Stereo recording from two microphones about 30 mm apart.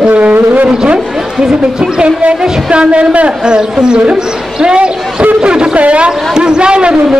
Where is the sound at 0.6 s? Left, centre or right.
Right.